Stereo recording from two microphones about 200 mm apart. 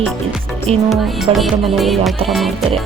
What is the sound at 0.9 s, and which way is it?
Music, centre (ahead or behind).